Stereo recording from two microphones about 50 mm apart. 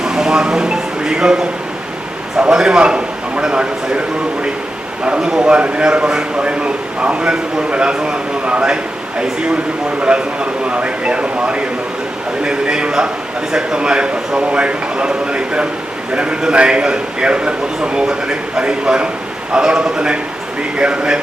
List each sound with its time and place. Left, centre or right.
0.0 s a man's voice: centre
5.0 s a man's voice: centre
10.7 s a man's voice: right